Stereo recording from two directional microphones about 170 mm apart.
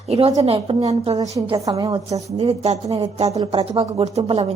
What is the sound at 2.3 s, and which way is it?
Speech, 40° right (ahead or behind).